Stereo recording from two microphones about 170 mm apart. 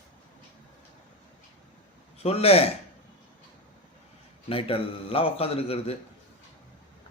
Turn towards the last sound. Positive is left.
turn(degrees=35)  # may be behind; listen again after turning